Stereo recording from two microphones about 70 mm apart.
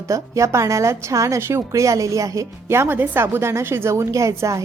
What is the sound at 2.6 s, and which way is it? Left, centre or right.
A woman's voice, right.